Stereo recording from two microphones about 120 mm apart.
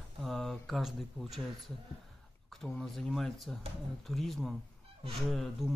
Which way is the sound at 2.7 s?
5° left (ahead or behind).